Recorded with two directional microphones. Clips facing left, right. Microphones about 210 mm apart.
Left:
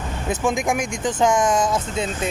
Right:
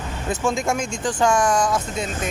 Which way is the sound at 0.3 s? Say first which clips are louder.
Left 1 dB; 15° left (ahead or behind).